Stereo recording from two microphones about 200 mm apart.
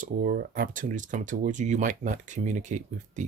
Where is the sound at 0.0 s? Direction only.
45° right (ahead or behind).